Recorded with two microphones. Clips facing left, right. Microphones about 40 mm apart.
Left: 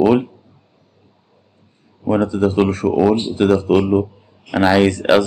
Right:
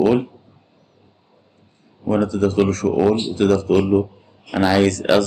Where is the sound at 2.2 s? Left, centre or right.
Centre.